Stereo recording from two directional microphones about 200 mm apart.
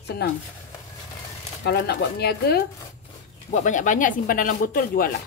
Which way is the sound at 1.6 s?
55° left (ahead or behind).